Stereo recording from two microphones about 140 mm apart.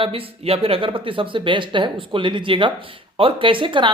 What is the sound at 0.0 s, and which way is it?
Speech, 40° right (ahead or behind).